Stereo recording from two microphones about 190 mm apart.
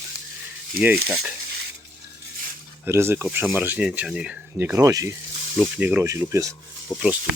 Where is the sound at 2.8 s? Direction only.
15° right (ahead or behind).